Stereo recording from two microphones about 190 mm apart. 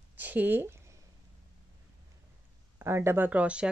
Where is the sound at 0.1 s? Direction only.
10° right (ahead or behind).